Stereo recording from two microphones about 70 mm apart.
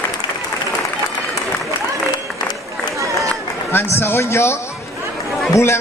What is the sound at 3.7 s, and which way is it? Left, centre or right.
A man's voice, left.